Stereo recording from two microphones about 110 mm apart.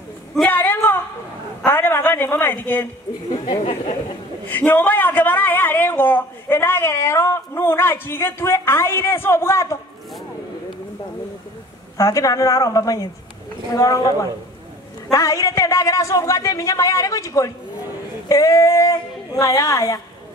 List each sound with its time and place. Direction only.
0.5 s a sound: 20° left (ahead or behind)
3.3 s speech: 65° left (ahead or behind)
4.5 s speech: 15° left (ahead or behind)
12.0 s a woman's voice: 30° left (ahead or behind)